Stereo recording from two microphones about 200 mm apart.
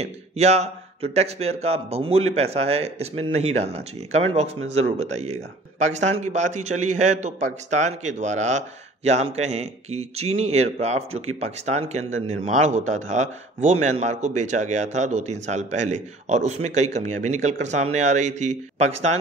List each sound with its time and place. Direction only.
0.0 s a man's voice: 30° right (ahead or behind)